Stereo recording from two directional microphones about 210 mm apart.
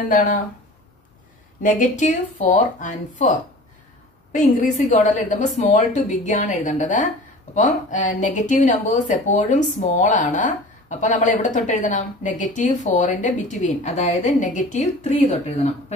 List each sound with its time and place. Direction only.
0.1 s speech: 40° left (ahead or behind)
1.6 s speech: 40° left (ahead or behind)